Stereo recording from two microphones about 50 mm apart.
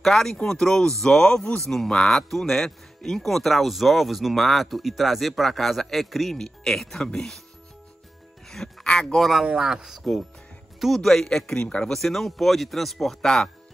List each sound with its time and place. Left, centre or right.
0.0 s speech: centre
8.5 s music: centre
9.0 s speech: centre
9.6 s speech: centre
10.8 s speech: centre; by 11.9 s left
11.9 s speech: centre